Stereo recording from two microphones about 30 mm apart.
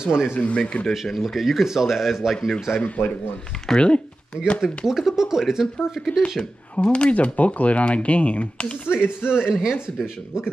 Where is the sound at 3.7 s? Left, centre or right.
Left.